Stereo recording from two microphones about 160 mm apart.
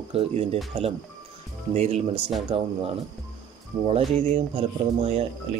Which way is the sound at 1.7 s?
40° right (ahead or behind).